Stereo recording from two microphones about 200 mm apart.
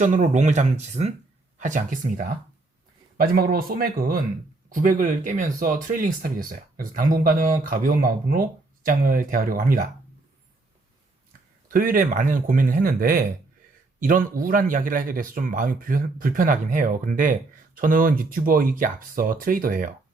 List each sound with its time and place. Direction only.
0.0 s speech: 40° right (ahead or behind)
11.7 s speech: 45° right (ahead or behind)